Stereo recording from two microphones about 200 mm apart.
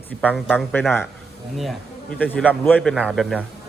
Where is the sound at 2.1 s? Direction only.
5° left (ahead or behind).